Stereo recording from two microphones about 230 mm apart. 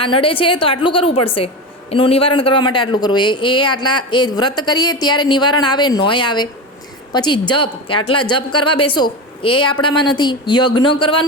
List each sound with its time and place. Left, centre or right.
0.0 s a man's voice: left